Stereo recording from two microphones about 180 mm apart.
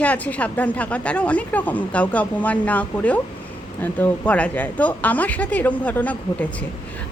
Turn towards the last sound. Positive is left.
turn(degrees=10)  # may be behind; listen again after turning